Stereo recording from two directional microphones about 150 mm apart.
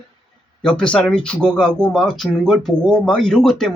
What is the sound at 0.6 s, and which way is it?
Speech, 5° left (ahead or behind).